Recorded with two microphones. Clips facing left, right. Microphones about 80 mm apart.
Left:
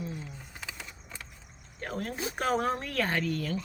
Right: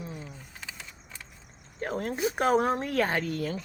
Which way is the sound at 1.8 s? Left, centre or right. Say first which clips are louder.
Right 5 dB; right.